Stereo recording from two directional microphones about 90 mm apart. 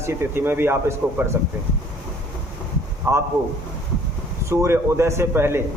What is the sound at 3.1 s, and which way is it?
Speech, 25° right (ahead or behind).